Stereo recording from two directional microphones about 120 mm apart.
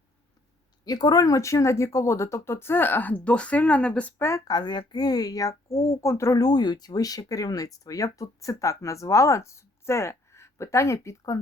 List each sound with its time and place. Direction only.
0.9 s speech: 35° left (ahead or behind); by 4.1 s 10° left (ahead or behind)
4.2 s speech: 25° left (ahead or behind)